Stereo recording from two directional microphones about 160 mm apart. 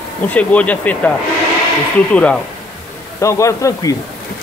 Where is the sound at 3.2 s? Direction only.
20° left (ahead or behind).